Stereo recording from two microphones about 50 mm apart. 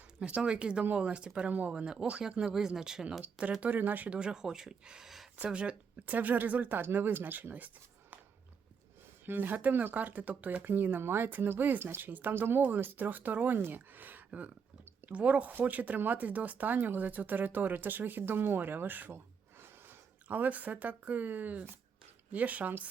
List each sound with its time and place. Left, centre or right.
0.2 s speech: right
1.5 s speech: right
3.6 s speech: right
4.1 s speech: centre
5.4 s speech: right
6.1 s speech: right
9.2 s speech: right
12.6 s speech: right
19.1 s gasp: right
20.2 s speech: right